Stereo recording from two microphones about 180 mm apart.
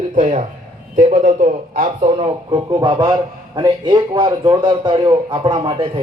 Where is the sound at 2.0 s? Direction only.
30° right (ahead or behind).